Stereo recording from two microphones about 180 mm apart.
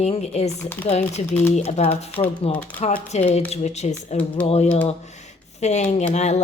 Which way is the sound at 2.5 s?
10° left (ahead or behind).